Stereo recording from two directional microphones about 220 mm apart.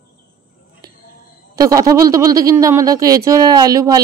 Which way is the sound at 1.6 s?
15° right (ahead or behind).